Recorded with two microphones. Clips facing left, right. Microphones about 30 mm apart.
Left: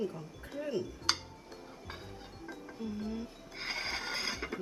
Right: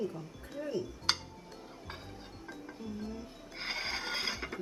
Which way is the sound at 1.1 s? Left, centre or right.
Centre.